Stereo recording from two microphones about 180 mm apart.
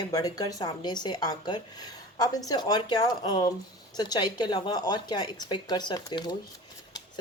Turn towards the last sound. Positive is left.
turn(degrees=25)  # may be behind; listen again after turning